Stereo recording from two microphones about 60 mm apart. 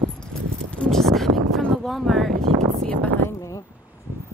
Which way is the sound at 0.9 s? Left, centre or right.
Centre.